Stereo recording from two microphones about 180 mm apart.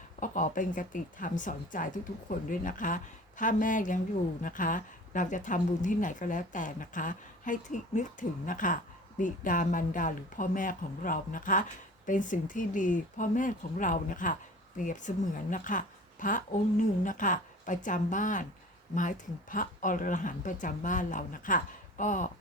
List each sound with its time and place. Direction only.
0.2 s speech: 45° left (ahead or behind)